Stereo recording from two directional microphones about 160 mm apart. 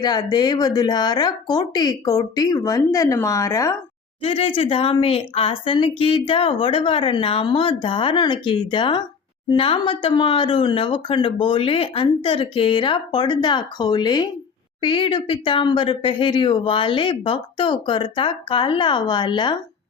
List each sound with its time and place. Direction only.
0.0 s speech: 25° left (ahead or behind)
4.2 s a woman's voice: 35° left (ahead or behind)